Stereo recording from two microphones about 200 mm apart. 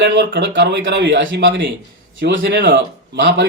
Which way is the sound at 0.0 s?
60° right (ahead or behind).